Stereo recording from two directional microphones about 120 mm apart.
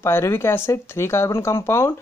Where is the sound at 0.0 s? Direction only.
20° left (ahead or behind).